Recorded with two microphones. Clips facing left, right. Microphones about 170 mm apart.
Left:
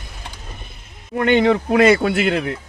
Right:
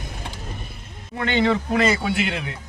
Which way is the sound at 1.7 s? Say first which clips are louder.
Left 7 dB; 60° left (ahead or behind).